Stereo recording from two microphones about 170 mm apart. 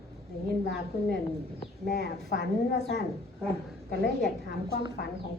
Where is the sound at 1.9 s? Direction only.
90° left.